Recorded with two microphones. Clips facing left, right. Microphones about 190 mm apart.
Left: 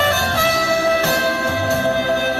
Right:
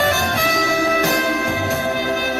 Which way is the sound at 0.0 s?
15° right (ahead or behind).